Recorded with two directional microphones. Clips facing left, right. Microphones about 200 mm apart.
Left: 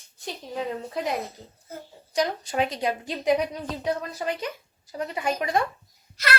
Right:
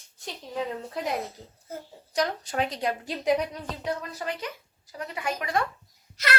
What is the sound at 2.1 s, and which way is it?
A woman's voice, centre (ahead or behind).